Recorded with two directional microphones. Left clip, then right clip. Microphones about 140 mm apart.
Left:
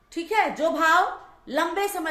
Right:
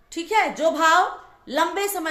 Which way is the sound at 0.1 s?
25° right (ahead or behind).